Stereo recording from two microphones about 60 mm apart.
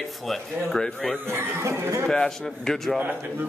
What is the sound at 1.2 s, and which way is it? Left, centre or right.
Speech, right.